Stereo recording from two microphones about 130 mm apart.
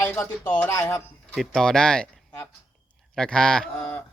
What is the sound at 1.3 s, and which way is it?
Speech, 5° left (ahead or behind).